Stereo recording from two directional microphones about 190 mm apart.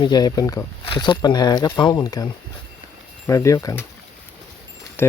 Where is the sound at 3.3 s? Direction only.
15° left (ahead or behind).